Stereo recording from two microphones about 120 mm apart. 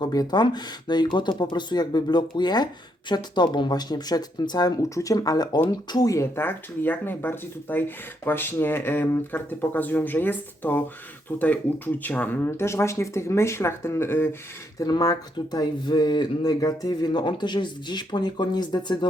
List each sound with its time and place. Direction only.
0.0 s speech: 35° left (ahead or behind)
14.8 s speech: 30° left (ahead or behind)